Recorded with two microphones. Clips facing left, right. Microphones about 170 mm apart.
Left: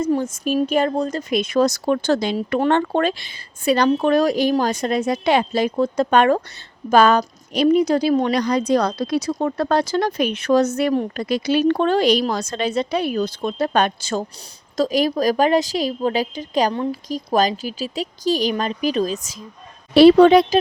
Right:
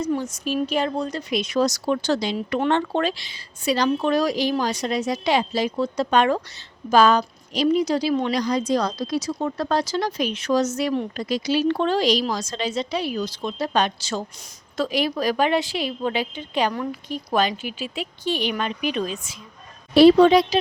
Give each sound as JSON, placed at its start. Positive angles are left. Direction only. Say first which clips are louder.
{"t": 0.0, "sound": "a woman's voice", "louder": "left 4 dB", "side_deg": 50}
{"t": 16.7, "sound": "a woman's voice", "louder": "left 5 dB", "side_deg": 25}
{"t": 17.1, "sound": "a woman's voice", "louder": "left 3 dB", "side_deg": 40}
{"t": 19.9, "sound": "a woman's voice", "louder": "left 3 dB", "side_deg": 75}